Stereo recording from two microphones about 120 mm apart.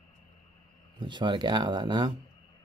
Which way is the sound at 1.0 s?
40° right (ahead or behind).